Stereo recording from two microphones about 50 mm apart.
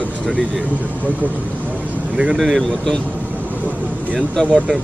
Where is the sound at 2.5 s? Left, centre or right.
Centre.